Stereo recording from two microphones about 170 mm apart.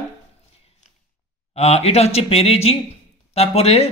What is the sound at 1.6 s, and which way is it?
A man's voice, 40° left (ahead or behind).